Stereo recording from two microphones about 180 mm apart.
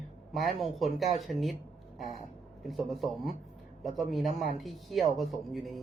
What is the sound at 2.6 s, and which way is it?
Speech, centre (ahead or behind).